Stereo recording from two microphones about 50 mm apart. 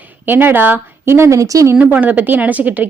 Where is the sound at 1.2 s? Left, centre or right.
Right.